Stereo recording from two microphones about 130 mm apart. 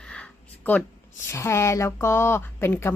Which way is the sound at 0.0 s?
10° left (ahead or behind).